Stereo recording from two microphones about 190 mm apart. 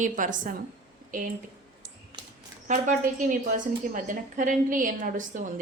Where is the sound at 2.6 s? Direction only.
45° right (ahead or behind).